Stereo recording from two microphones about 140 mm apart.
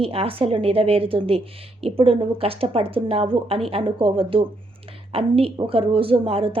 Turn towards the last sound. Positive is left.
turn(degrees=-40)  # may be behind; listen again after turning